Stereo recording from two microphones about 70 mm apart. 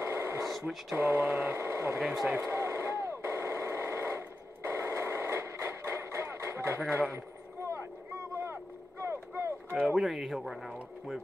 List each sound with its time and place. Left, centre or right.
0.0 s a sound: right
0.5 s speech: centre
0.9 s mantra: right
2.0 s speech: centre
2.4 s a sound: right
9.8 s speech: centre